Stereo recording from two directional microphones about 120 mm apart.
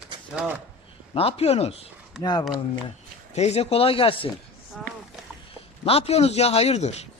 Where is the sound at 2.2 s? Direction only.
35° left (ahead or behind).